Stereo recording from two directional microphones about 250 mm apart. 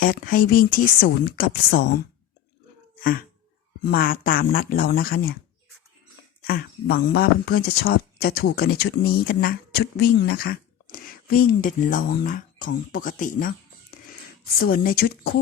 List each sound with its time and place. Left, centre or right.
0.0 s speech: left
3.0 s a sound: left
3.9 s speech: left
6.4 s speech: left